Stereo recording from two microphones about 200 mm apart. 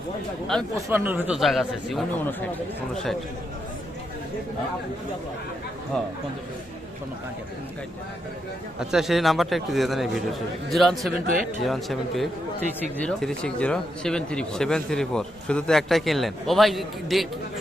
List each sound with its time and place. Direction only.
0.5 s speech: centre (ahead or behind)
0.9 s speech: 10° right (ahead or behind)
8.8 s speech: centre (ahead or behind)